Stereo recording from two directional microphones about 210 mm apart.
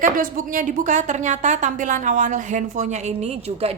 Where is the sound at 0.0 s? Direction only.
40° right (ahead or behind).